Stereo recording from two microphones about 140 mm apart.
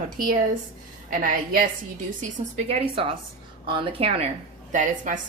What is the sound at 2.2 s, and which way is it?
Speech, 65° right (ahead or behind).